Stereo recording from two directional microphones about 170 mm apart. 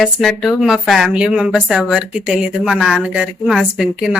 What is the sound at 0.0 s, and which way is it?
Speech, centre (ahead or behind).